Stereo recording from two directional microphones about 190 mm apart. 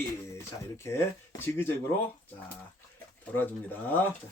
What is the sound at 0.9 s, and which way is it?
Speech, 15° left (ahead or behind).